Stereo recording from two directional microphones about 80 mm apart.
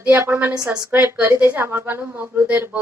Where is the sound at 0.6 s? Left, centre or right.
Right.